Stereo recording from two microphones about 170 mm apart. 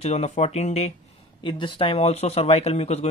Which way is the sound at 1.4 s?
30° left (ahead or behind).